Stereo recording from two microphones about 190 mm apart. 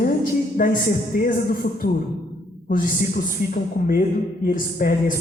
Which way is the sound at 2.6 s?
45° left (ahead or behind).